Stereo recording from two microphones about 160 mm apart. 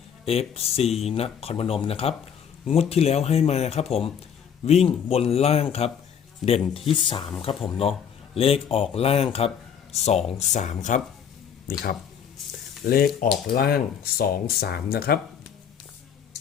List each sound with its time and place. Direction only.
0.3 s speech: 40° left (ahead or behind)
6.4 s speech: centre (ahead or behind)
6.7 s speech: 35° left (ahead or behind); by 11.0 s 50° left (ahead or behind)
12.4 s frying: centre (ahead or behind)
12.8 s speech: 70° left (ahead or behind)